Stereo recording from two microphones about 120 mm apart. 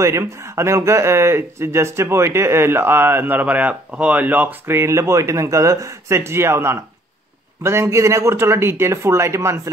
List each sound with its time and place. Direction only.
0.0 s speech: 25° right (ahead or behind)